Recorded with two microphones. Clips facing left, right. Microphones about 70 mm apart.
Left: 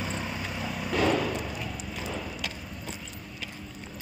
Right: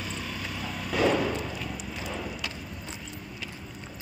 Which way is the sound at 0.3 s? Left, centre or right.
Centre.